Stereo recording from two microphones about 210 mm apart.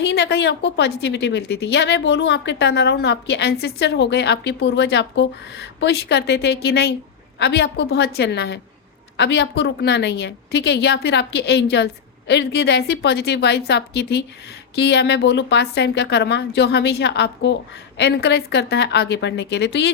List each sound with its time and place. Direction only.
0.0 s a woman's voice: 55° left (ahead or behind)